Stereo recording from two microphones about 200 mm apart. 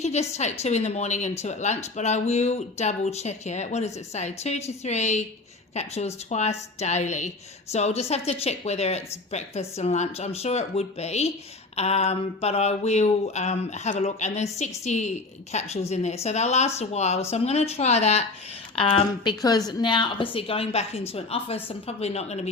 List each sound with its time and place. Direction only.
0.0 s a woman's voice: 35° left (ahead or behind)